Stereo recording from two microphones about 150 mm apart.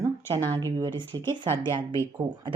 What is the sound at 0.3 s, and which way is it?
Speech, 25° right (ahead or behind).